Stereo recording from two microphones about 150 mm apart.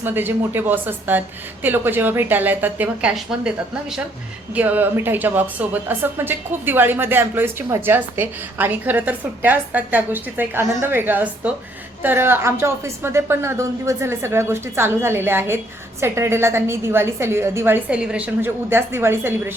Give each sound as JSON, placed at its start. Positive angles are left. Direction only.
{"t": 0.0, "sound": "speech", "side_deg": -15}
{"t": 4.5, "sound": "speech", "side_deg": -10}